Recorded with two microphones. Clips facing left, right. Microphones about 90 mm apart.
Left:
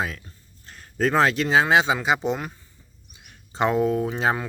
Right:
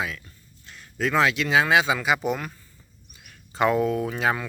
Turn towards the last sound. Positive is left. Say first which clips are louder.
# left 1 dB
turn(degrees=25)  # may be behind; listen again after turning